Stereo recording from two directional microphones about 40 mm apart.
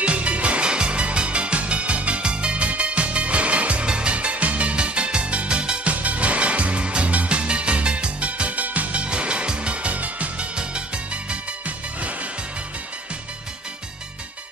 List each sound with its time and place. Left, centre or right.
0.0 s music: right
10.5 s music: right
11.2 s music: right